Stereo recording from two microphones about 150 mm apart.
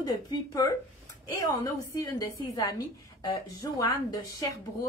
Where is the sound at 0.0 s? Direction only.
30° left (ahead or behind).